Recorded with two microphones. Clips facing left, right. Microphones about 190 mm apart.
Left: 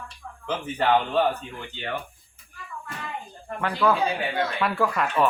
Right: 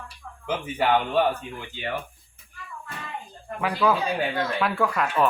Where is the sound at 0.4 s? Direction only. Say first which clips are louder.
Even; 10° right (ahead or behind).